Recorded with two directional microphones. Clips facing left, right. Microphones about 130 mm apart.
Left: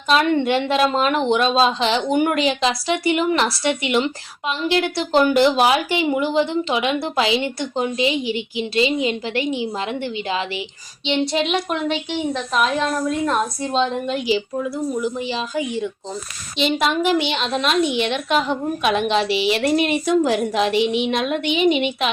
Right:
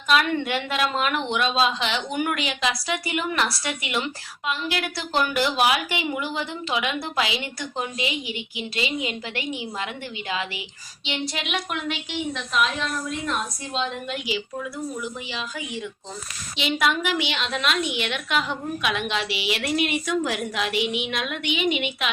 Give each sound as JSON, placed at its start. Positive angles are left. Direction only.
{"t": 0.1, "sound": "a woman's voice", "side_deg": 30}
{"t": 12.5, "sound": "a woman's voice", "side_deg": 45}
{"t": 13.6, "sound": "a woman's voice", "side_deg": 30}